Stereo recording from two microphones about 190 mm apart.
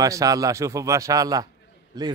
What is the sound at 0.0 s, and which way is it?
A man's voice, 20° right (ahead or behind).